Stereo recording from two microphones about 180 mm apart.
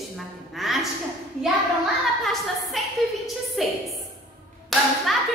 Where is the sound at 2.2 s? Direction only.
Centre (ahead or behind).